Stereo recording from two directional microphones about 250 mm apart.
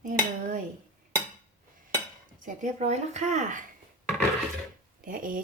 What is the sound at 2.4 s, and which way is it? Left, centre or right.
A woman's voice, right.